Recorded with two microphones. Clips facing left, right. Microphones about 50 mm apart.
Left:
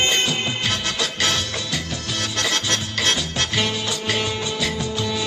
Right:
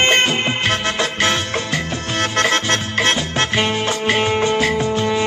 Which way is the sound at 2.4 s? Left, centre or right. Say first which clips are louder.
Right 6 dB; right.